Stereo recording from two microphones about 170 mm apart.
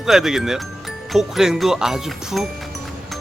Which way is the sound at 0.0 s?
Centre (ahead or behind).